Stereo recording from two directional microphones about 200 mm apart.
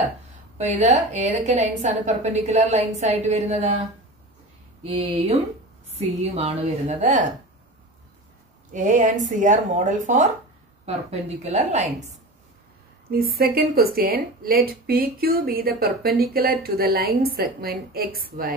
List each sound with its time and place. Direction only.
0.6 s a woman's voice: 35° right (ahead or behind)
4.8 s a woman's voice: 30° right (ahead or behind)
8.7 s a woman's voice: 40° right (ahead or behind)
13.1 s a woman's voice: 50° right (ahead or behind)